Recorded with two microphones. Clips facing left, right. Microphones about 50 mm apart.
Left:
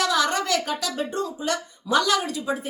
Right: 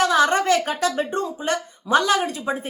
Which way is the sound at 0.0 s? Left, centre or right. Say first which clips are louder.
Right 5 dB; right.